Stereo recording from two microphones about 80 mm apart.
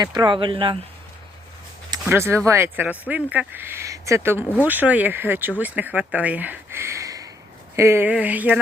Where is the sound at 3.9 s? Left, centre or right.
Right.